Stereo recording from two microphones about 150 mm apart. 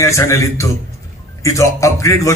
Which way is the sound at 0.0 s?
20° left (ahead or behind).